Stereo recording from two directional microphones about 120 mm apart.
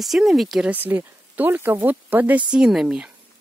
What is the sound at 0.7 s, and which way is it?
Speech, 15° right (ahead or behind).